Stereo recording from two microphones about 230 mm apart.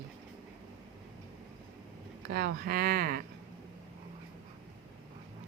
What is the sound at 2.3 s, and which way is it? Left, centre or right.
Speech, right.